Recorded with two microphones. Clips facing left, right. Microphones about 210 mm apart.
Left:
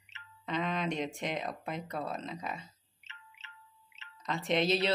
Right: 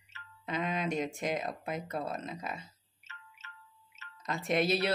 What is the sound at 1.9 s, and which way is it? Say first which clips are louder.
Speech: even; 45° right (ahead or behind).